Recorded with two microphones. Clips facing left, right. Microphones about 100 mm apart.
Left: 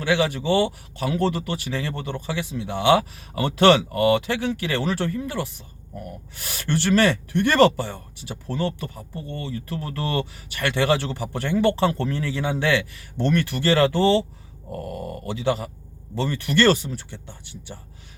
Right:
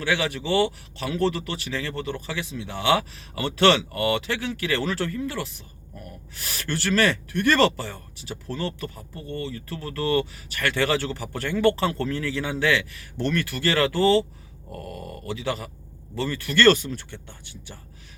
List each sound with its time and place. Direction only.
0.1 s speech: 25° left (ahead or behind)
6.7 s speech: 20° left (ahead or behind)
14.8 s speech: 40° left (ahead or behind); by 17.7 s 15° left (ahead or behind)